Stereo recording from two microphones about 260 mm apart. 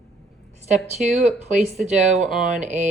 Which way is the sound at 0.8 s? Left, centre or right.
Centre.